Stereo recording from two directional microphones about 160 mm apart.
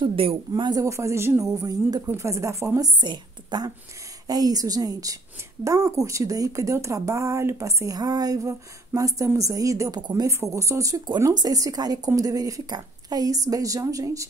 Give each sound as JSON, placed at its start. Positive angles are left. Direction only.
{"t": 0.0, "sound": "a woman's voice", "side_deg": -35}
{"t": 0.5, "sound": "a woman's voice", "side_deg": -25}